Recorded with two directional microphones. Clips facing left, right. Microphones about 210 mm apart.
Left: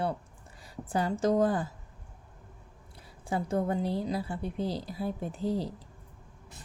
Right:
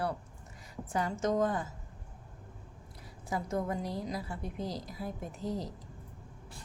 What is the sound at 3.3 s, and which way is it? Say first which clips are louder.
A woman's voice: left 4 dB; 30° left (ahead or behind).